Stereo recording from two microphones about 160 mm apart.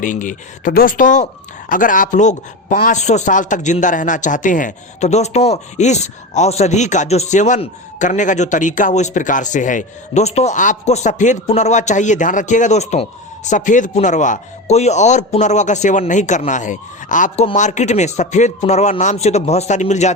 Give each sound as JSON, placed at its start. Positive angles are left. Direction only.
{"t": 0.0, "sound": "speech", "side_deg": 55}